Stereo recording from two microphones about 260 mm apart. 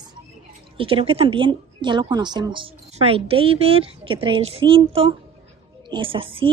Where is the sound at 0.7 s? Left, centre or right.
Right.